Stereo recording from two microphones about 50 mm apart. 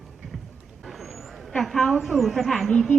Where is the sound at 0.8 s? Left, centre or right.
Centre.